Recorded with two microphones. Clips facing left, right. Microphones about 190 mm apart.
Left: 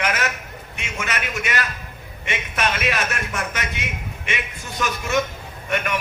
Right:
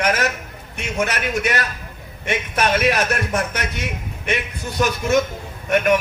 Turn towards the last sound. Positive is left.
turn(degrees=-45)  # may be behind; listen again after turning